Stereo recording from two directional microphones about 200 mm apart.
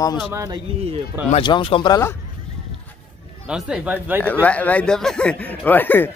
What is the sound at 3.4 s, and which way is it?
Speech, 5° right (ahead or behind).